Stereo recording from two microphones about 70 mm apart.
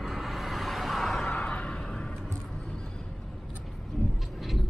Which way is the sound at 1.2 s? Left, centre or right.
Centre.